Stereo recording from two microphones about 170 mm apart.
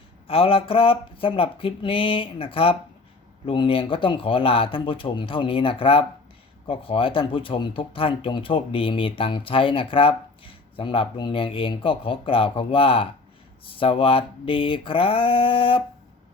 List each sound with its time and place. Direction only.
0.3 s speech: 35° left (ahead or behind)